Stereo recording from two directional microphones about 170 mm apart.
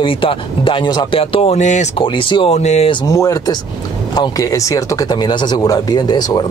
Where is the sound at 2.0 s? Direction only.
30° left (ahead or behind).